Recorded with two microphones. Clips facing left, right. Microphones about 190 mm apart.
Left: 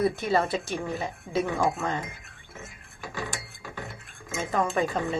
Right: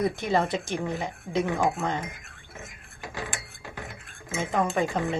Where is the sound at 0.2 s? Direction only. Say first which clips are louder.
Even; 20° right (ahead or behind).